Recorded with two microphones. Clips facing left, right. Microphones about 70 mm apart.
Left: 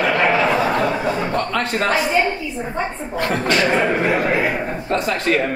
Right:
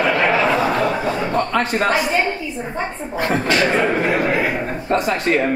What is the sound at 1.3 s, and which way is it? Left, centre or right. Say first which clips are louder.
Speech: right 2 dB; centre.